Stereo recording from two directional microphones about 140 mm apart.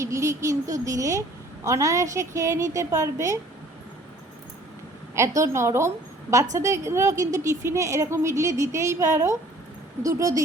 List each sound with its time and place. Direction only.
0.0 s a woman's voice: 20° right (ahead or behind)
5.1 s a woman's voice: 20° right (ahead or behind)